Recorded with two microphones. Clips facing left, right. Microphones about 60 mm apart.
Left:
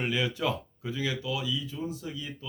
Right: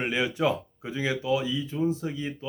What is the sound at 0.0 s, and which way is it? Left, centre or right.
Speech, right.